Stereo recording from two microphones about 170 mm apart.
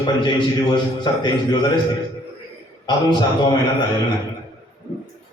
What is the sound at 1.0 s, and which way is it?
Speech, 25° left (ahead or behind).